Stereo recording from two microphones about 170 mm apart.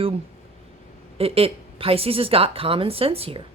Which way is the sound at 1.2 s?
35° right (ahead or behind).